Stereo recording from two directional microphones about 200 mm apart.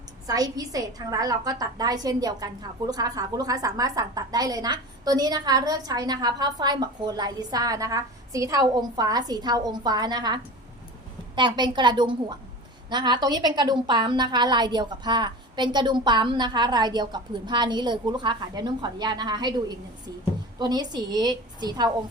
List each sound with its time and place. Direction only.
0.3 s a woman's voice: 20° right (ahead or behind)